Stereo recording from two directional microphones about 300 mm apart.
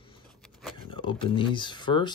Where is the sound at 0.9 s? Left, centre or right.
Centre.